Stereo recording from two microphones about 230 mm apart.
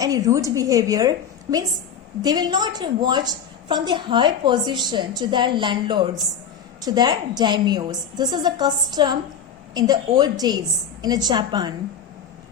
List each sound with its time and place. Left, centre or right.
0.0 s a woman's voice: centre